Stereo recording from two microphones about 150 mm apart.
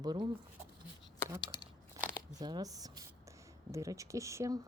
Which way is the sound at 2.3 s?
25° right (ahead or behind).